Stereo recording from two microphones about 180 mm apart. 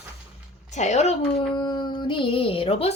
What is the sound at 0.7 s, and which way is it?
Speech, 40° left (ahead or behind).